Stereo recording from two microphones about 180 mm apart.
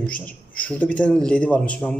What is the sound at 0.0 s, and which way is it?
Speech, 5° left (ahead or behind).